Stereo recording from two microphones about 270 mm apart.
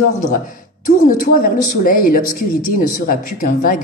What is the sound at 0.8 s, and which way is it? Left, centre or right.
Speech, left.